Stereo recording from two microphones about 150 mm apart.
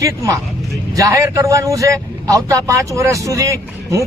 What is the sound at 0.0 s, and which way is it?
Speech, 20° right (ahead or behind).